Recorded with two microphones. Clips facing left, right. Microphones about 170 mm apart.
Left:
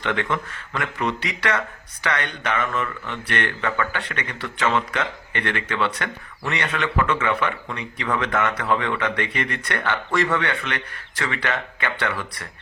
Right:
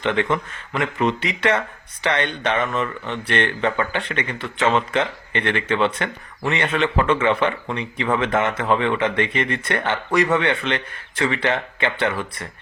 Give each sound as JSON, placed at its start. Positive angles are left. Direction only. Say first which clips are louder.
{"t": 0.0, "sound": "speech", "louder": "right 4 dB", "side_deg": -20}